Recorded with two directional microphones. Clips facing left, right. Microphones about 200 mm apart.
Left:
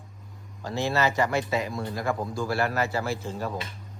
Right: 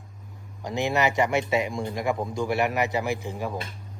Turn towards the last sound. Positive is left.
turn(degrees=-15)  # may be behind; listen again after turning